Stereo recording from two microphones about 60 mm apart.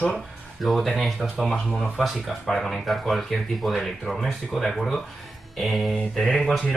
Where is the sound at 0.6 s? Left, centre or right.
Centre.